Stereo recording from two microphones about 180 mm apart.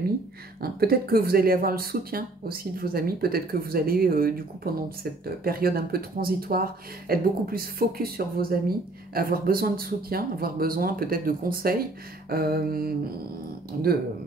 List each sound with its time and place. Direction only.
0.6 s speech: 55° right (ahead or behind)